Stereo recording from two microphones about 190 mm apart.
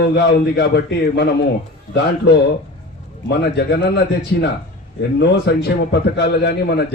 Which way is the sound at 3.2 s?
60° left (ahead or behind).